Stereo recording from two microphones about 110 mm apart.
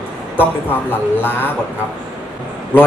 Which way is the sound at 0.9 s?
20° left (ahead or behind).